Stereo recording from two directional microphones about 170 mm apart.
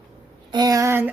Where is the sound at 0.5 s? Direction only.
20° right (ahead or behind).